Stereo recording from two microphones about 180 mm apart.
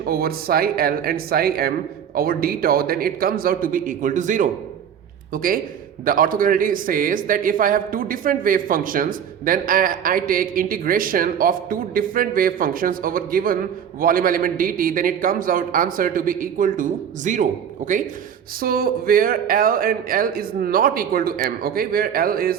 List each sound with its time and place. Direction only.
0.1 s a man's voice: 55° right (ahead or behind)